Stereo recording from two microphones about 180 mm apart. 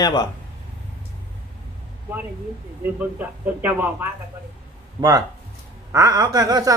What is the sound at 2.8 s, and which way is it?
Speech, 10° right (ahead or behind).